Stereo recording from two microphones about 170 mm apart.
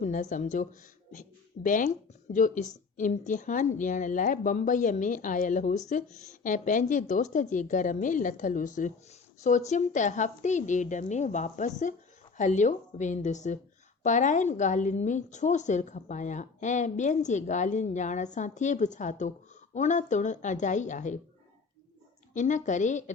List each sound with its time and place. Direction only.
0.0 s a woman's voice: 45° left (ahead or behind)
22.4 s a woman's voice: 45° left (ahead or behind)